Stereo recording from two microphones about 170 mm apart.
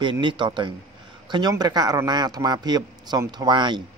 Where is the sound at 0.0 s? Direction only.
25° right (ahead or behind).